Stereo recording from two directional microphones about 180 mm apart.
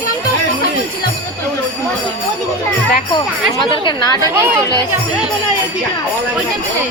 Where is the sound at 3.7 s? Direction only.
25° left (ahead or behind).